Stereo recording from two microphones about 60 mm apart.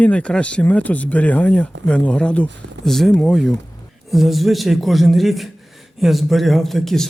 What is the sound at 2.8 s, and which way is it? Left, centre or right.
A man's voice, centre.